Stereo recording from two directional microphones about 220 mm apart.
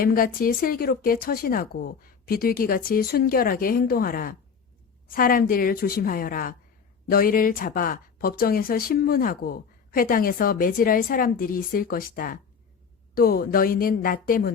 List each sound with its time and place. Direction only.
0.0 s speech: 40° left (ahead or behind)